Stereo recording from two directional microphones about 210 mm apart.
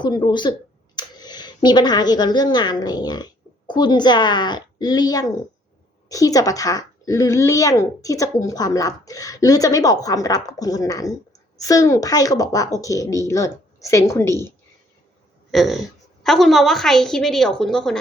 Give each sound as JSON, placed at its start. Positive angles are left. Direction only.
{"t": 0.0, "sound": "speech", "side_deg": 20}
{"t": 15.5, "sound": "a woman's voice", "side_deg": 0}